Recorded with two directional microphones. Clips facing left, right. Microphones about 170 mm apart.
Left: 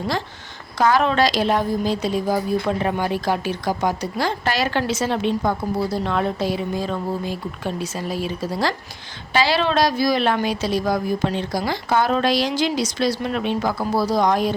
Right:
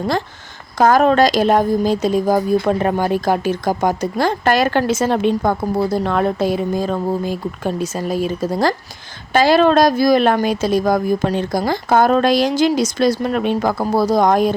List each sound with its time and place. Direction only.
0.8 s speech: 45° right (ahead or behind)